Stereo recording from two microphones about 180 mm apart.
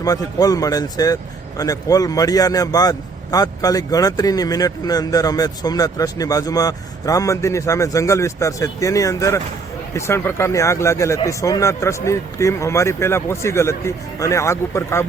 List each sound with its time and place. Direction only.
0.0 s speech: 20° left (ahead or behind)